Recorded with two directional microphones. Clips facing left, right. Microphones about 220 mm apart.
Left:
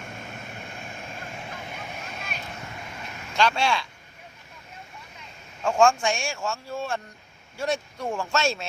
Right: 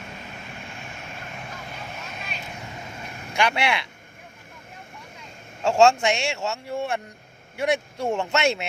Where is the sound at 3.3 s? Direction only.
15° right (ahead or behind).